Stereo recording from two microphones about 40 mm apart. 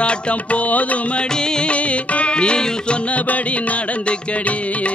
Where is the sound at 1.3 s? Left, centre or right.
Centre.